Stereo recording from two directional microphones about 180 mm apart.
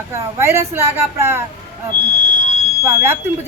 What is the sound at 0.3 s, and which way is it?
Speech, 15° right (ahead or behind).